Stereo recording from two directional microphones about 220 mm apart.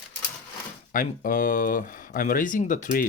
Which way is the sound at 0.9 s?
40° left (ahead or behind).